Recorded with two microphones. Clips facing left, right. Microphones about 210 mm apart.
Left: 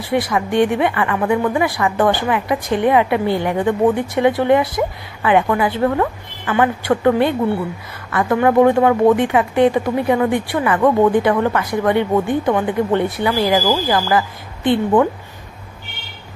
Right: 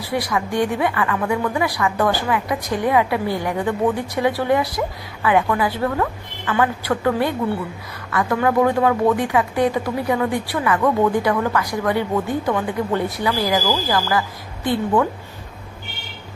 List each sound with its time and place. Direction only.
0.3 s a woman's voice: 25° left (ahead or behind)